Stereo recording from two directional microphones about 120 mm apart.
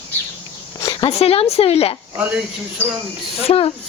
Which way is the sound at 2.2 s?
15° right (ahead or behind).